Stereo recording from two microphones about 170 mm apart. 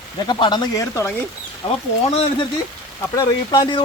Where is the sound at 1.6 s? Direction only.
30° left (ahead or behind).